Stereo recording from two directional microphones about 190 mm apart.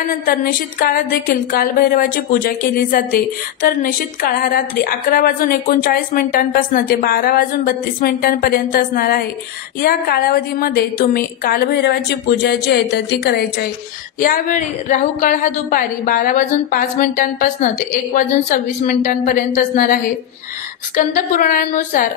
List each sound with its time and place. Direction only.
0.2 s a woman's voice: 50° left (ahead or behind)
18.9 s a woman's voice: 40° left (ahead or behind)